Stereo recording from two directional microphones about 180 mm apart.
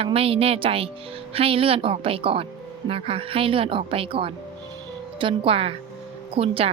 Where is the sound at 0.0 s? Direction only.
30° right (ahead or behind).